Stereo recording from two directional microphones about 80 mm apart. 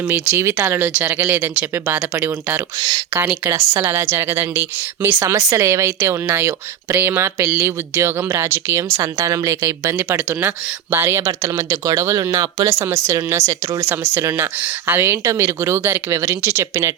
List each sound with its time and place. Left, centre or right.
0.1 s speech: right
3.5 s speech: right
5.2 s speech: right
9.1 s speech: right
10.9 s speech: right